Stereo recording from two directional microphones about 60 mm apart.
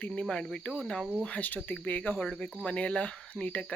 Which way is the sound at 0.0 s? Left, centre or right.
Centre.